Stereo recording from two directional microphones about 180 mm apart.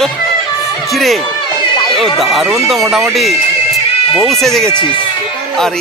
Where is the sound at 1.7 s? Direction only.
25° left (ahead or behind).